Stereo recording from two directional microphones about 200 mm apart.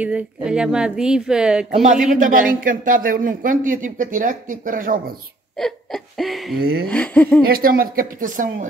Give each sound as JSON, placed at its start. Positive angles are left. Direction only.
{"t": 0.0, "sound": "speech", "side_deg": -5}
{"t": 1.7, "sound": "speech", "side_deg": -35}
{"t": 5.6, "sound": "hiccup", "side_deg": 0}
{"t": 6.6, "sound": "speech", "side_deg": -50}
{"t": 6.9, "sound": "speech", "side_deg": 5}
{"t": 7.4, "sound": "speech", "side_deg": -45}